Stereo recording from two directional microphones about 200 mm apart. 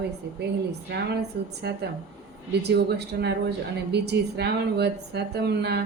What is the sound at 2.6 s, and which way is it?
Speech, 55° right (ahead or behind).